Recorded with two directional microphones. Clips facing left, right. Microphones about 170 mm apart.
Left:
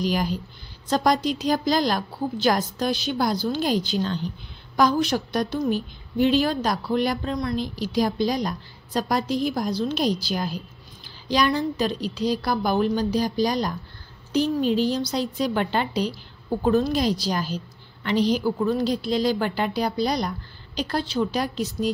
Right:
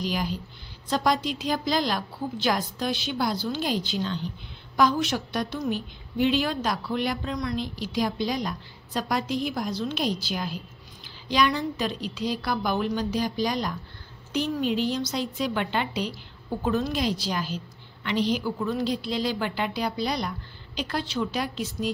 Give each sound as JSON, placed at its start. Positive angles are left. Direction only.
{"t": 0.0, "sound": "a woman's voice", "side_deg": 45}